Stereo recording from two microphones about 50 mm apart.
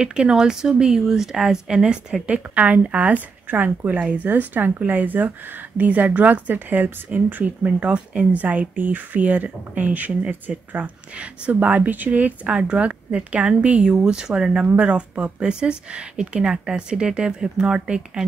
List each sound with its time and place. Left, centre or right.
0.0 s speech: centre
2.2 s speech: right
12.5 s speech: centre